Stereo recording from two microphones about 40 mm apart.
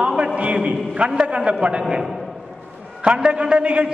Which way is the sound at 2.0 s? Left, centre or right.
Centre.